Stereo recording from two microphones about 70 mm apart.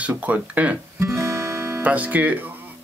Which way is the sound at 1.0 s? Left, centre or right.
Right.